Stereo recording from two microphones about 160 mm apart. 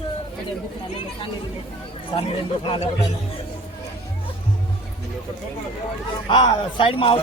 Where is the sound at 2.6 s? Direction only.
35° left (ahead or behind).